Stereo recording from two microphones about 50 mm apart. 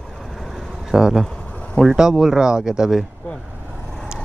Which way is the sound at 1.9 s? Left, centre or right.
Centre.